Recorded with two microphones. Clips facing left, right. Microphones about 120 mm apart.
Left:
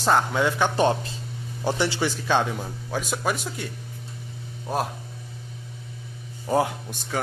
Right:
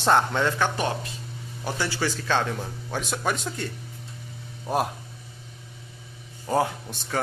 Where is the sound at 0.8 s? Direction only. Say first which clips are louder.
Left 6 dB; 30° left (ahead or behind); by 2.5 s 15° left (ahead or behind).